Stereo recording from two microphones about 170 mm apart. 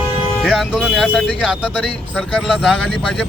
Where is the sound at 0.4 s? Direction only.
5° right (ahead or behind).